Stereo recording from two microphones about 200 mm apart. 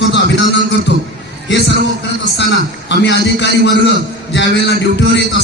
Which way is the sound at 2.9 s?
60° left (ahead or behind).